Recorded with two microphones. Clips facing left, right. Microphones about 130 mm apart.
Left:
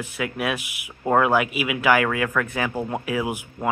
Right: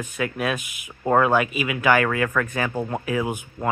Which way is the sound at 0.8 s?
Centre (ahead or behind).